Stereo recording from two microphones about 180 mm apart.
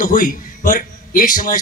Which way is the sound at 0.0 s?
50° left (ahead or behind).